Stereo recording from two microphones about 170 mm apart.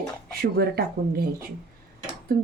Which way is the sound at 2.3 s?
60° right (ahead or behind).